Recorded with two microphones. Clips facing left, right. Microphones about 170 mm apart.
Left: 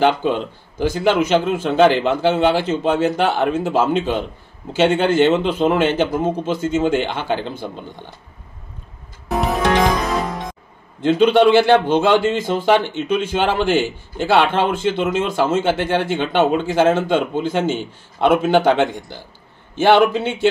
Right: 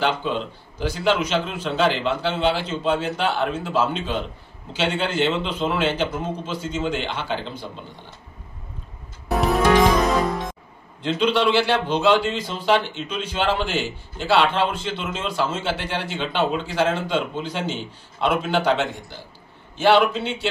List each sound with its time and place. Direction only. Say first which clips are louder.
0.0 s a man's voice: left 6 dB; 55° left (ahead or behind)
11.0 s a man's voice: left 8 dB; 50° left (ahead or behind)